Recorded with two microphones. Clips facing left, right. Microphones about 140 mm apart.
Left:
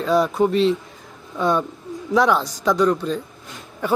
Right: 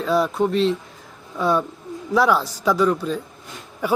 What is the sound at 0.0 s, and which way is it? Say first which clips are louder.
Speech: left 2 dB; centre (ahead or behind).